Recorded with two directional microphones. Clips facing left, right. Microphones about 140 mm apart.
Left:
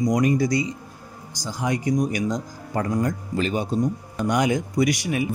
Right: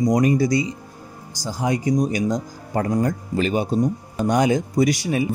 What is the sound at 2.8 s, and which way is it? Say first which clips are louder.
Speech: right 3 dB; 35° right (ahead or behind).